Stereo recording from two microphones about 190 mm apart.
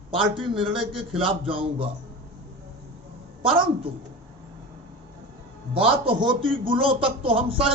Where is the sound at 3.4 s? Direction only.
25° right (ahead or behind).